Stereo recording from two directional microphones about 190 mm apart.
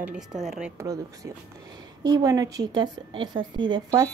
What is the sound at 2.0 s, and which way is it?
A woman's voice, 20° right (ahead or behind).